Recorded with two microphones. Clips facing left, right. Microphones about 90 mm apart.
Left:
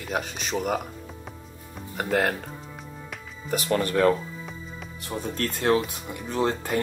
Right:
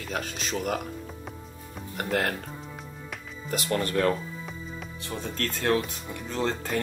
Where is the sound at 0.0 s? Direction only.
15° left (ahead or behind).